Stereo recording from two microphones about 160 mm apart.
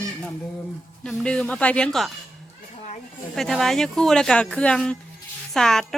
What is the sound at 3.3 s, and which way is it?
A woman's voice, centre (ahead or behind).